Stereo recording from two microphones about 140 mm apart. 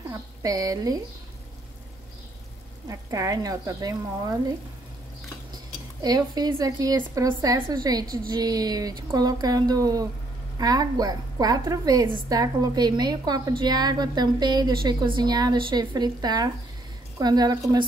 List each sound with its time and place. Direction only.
0.4 s a woman's voice: 25° right (ahead or behind)
2.9 s a woman's voice: 25° right (ahead or behind)
6.0 s a woman's voice: 30° right (ahead or behind)